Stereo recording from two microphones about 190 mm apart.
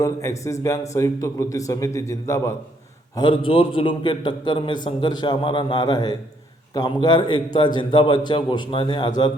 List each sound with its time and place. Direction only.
0.0 s a man's voice: 15° left (ahead or behind)
3.2 s a man's voice: 25° left (ahead or behind)